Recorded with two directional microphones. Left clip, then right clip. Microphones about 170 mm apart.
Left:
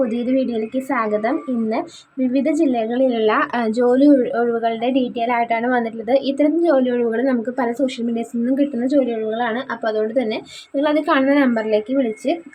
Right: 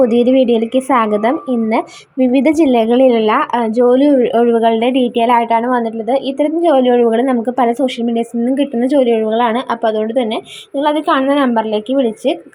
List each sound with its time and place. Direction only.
0.0 s a woman's voice: 25° right (ahead or behind); by 6.5 s 10° right (ahead or behind)
6.6 s a woman's voice: 25° right (ahead or behind)